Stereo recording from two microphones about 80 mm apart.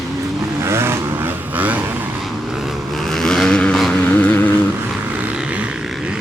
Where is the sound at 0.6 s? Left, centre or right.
Right.